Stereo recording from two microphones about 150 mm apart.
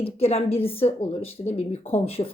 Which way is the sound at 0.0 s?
40° left (ahead or behind).